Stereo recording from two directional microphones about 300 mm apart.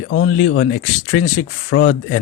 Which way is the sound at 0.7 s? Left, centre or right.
Left.